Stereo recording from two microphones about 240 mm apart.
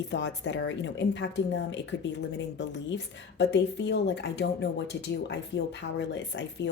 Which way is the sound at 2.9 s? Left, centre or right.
Left.